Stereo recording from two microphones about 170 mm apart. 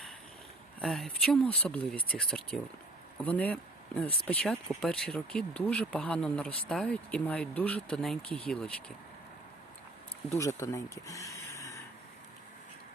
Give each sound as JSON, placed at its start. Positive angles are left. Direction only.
{"t": 0.8, "sound": "speech", "side_deg": 0}
{"t": 10.3, "sound": "speech", "side_deg": 20}